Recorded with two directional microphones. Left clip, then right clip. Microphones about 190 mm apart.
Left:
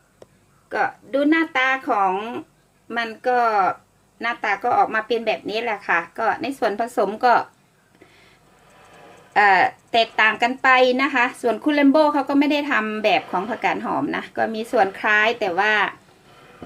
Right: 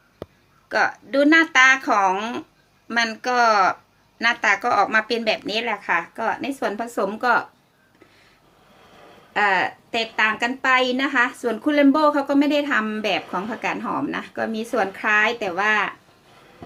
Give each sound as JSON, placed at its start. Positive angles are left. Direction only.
{"t": 0.7, "sound": "speech", "side_deg": 0}
{"t": 9.3, "sound": "speech", "side_deg": 5}